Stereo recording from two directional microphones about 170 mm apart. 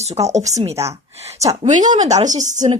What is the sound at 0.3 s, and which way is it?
A woman's voice, 40° right (ahead or behind).